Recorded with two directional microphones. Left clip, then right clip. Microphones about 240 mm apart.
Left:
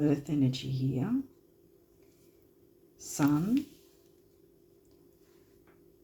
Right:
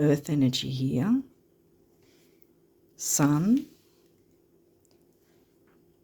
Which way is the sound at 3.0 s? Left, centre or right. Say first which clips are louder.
Right 4 dB; right.